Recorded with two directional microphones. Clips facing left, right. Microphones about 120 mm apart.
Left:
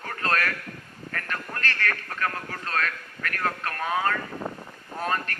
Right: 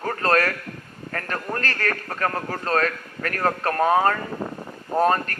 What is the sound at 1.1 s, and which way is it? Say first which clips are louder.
Speech: right 6 dB; 40° right (ahead or behind).